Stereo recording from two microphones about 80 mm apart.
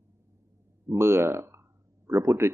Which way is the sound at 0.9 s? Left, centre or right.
Right.